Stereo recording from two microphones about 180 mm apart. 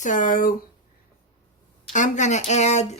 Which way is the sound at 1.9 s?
40° left (ahead or behind).